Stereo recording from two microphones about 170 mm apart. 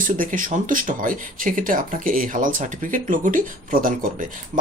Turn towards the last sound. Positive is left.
turn(degrees=-55)  # may be behind; listen again after turning